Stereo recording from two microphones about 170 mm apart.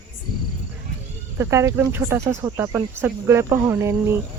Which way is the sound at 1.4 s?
15° right (ahead or behind).